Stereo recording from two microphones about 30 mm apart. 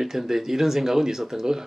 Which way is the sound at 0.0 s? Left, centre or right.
Centre.